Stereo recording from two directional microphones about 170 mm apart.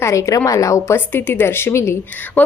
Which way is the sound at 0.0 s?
15° left (ahead or behind).